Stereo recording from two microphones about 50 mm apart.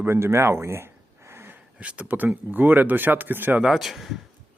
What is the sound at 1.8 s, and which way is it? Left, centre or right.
Speech, right.